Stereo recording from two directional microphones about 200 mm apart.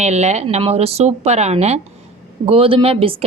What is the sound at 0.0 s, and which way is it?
A woman's voice, 35° right (ahead or behind).